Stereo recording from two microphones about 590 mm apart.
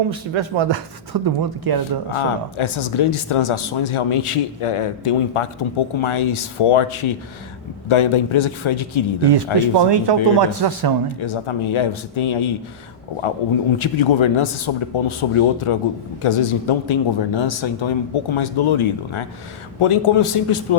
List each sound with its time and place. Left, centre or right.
0.3 s speech: right
2.1 s speech: left
9.7 s speech: right
11.2 s speech: left